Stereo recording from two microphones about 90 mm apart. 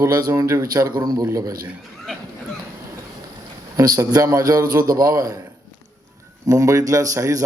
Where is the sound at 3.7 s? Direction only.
45° right (ahead or behind).